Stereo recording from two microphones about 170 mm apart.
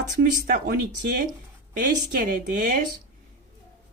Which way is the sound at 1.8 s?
60° right (ahead or behind).